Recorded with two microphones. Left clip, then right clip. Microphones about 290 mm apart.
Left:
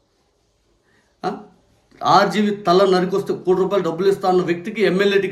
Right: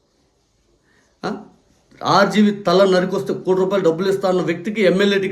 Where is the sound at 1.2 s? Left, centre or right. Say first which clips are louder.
Left 1 dB; centre.